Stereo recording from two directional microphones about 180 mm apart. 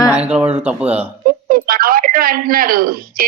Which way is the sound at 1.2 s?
55° right (ahead or behind).